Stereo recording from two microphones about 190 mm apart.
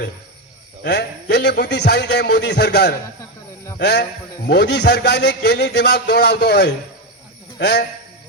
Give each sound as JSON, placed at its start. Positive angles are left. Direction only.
{"t": 0.9, "sound": "a man's voice", "side_deg": 60}